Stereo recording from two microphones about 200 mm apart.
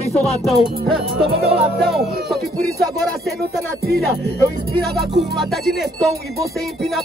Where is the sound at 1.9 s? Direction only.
Centre (ahead or behind).